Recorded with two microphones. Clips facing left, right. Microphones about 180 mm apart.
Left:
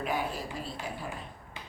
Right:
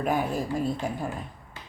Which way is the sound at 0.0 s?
45° right (ahead or behind).